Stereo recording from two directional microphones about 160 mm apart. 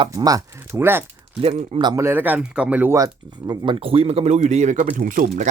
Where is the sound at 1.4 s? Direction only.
30° right (ahead or behind).